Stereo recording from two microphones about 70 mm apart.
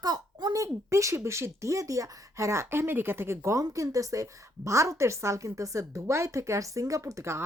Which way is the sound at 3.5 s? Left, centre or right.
Right.